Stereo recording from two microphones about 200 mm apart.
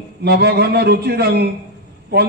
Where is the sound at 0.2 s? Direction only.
55° right (ahead or behind).